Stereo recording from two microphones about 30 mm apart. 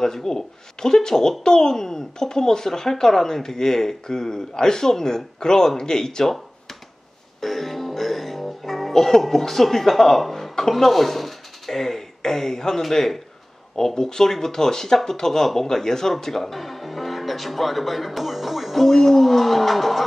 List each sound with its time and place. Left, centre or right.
0.0 s speech: centre
7.3 s music: centre
10.7 s speech: centre